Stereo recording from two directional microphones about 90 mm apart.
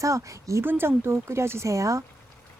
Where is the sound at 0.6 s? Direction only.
25° right (ahead or behind).